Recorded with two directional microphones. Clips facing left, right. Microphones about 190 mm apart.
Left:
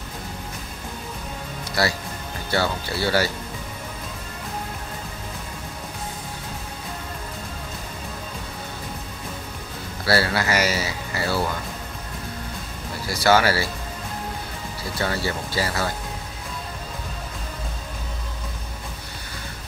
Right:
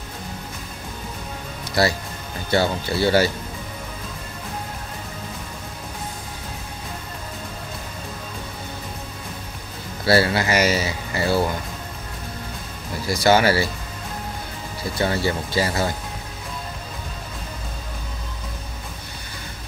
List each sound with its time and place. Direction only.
2.5 s speech: 20° right (ahead or behind)
10.0 s speech: 20° right (ahead or behind)
13.1 s speech: 20° right (ahead or behind)
15.0 s speech: 20° right (ahead or behind)